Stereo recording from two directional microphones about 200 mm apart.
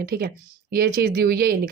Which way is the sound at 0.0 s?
45° right (ahead or behind).